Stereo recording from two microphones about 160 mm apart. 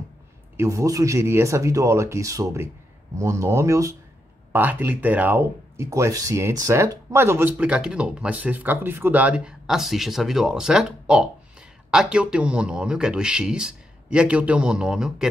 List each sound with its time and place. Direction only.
0.6 s speech: 20° right (ahead or behind); by 15.2 s 5° right (ahead or behind)